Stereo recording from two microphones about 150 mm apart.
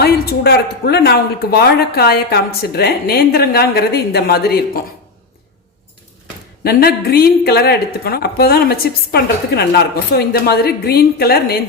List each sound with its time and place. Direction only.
0.0 s a woman's voice: 90° left
6.7 s a woman's voice: 90° left